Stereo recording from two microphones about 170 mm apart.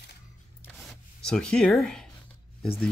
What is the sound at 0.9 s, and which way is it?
Rub, 5° left (ahead or behind).